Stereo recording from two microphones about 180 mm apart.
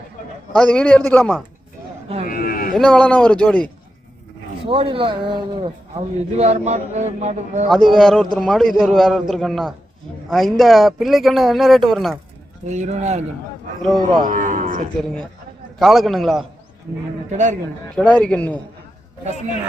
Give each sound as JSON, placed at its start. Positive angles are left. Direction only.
{"t": 0.5, "sound": "a man's voice", "side_deg": 5}
{"t": 2.2, "sound": "a sound", "side_deg": 50}
{"t": 2.7, "sound": "a man's voice", "side_deg": 5}
{"t": 4.6, "sound": "speech", "side_deg": -30}
{"t": 6.3, "sound": "a man's voice", "side_deg": -40}
{"t": 7.7, "sound": "a man's voice", "side_deg": 0}
{"t": 12.6, "sound": "a man's voice", "side_deg": -40}
{"t": 14.3, "sound": "speech", "side_deg": -50}
{"t": 15.8, "sound": "a man's voice", "side_deg": 0}
{"t": 17.3, "sound": "a man's voice", "side_deg": -40}
{"t": 17.9, "sound": "a man's voice", "side_deg": 5}